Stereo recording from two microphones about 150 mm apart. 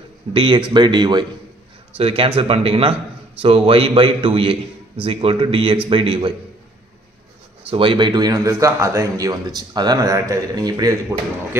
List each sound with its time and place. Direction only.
0.3 s a man's voice: 35° right (ahead or behind)
7.6 s a man's voice: 35° right (ahead or behind)